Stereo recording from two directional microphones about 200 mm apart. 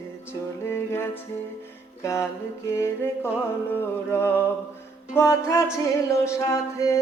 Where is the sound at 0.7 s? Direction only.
10° left (ahead or behind).